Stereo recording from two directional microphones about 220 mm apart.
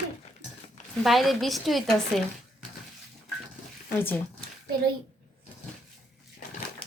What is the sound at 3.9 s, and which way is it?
Speech, 10° left (ahead or behind).